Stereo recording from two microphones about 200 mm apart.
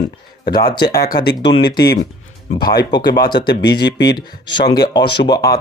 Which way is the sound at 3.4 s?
55° left (ahead or behind).